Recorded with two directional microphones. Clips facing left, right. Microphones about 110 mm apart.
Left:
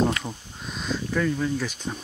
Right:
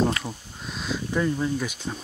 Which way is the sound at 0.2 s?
Centre (ahead or behind).